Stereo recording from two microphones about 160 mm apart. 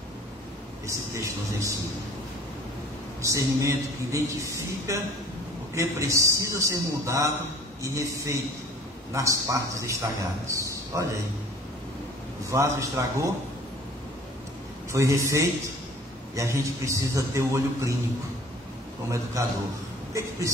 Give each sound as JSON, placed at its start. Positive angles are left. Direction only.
{"t": 0.8, "sound": "a man's voice", "side_deg": -20}
{"t": 3.2, "sound": "a man's voice", "side_deg": -20}
{"t": 12.4, "sound": "a man's voice", "side_deg": -20}
{"t": 14.9, "sound": "a man's voice", "side_deg": -20}
{"t": 19.0, "sound": "a man's voice", "side_deg": -20}